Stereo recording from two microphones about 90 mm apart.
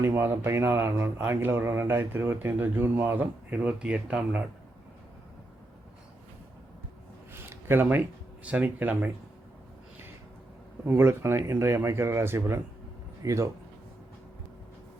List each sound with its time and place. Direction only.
0.0 s speech: 25° right (ahead or behind)
7.5 s speech: 25° right (ahead or behind)
10.8 s speech: 25° right (ahead or behind)